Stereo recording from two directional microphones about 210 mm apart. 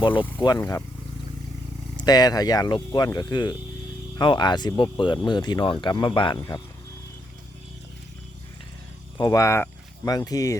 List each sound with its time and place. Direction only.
0.0 s speech: 25° left (ahead or behind)
2.0 s speech: 20° left (ahead or behind)
9.1 s speech: 15° left (ahead or behind)